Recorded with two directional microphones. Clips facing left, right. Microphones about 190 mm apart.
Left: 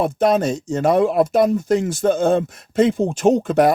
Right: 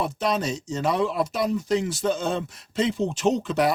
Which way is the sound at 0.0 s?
50° left (ahead or behind).